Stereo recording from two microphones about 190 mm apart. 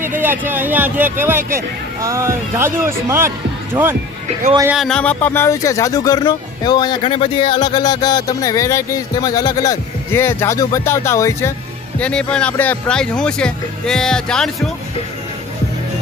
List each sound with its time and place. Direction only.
0.2 s speech: 10° right (ahead or behind)
4.7 s speech: centre (ahead or behind)